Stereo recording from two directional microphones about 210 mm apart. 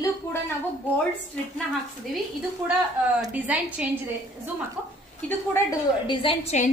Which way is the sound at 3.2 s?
5° right (ahead or behind).